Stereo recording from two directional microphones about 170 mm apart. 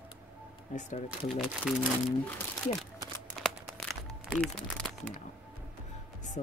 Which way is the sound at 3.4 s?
5° left (ahead or behind).